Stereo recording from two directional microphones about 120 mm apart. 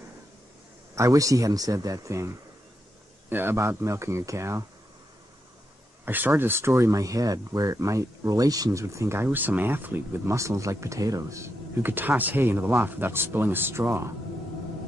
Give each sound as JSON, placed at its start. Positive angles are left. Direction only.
{"t": 0.9, "sound": "speech", "side_deg": -25}
{"t": 6.0, "sound": "speech", "side_deg": -15}